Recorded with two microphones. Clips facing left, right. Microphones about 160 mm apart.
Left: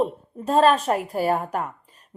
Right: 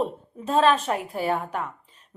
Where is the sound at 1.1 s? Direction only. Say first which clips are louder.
Left 3 dB; 40° left (ahead or behind).